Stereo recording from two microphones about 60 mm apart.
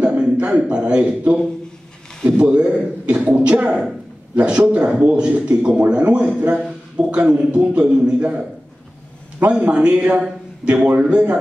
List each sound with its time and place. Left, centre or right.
0.2 s a man's voice: right